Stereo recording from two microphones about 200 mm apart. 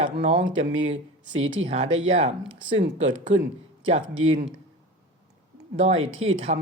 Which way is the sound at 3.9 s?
25° right (ahead or behind).